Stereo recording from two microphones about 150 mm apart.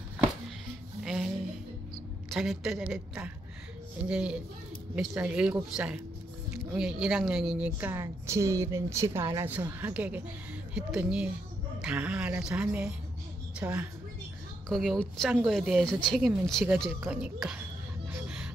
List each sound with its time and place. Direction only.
1.0 s music: centre (ahead or behind)
2.3 s speech: centre (ahead or behind)
4.1 s a woman's voice: 5° right (ahead or behind)
14.7 s speech: centre (ahead or behind)
18.1 s music: 5° right (ahead or behind)